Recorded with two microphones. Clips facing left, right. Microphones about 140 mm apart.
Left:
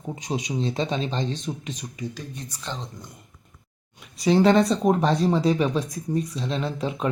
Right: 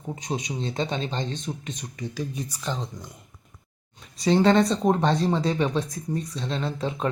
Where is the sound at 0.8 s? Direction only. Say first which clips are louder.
Left 2 dB; 30° right (ahead or behind).